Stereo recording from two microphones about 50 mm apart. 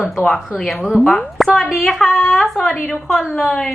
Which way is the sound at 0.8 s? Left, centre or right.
Left.